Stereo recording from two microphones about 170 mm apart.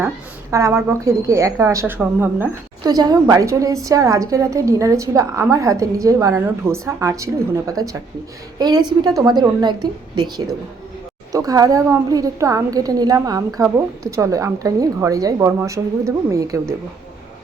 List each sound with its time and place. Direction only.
0.5 s a woman's voice: 15° right (ahead or behind)
2.8 s a woman's voice: 20° right (ahead or behind)